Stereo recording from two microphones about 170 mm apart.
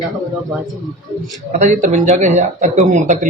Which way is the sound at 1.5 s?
50° right (ahead or behind).